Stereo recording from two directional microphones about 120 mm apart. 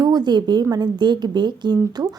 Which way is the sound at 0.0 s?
35° right (ahead or behind).